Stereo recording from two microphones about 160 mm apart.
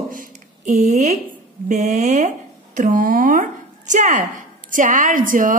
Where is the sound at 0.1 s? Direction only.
55° right (ahead or behind).